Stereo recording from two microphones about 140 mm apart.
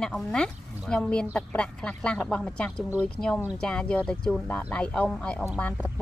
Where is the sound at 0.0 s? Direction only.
5° left (ahead or behind).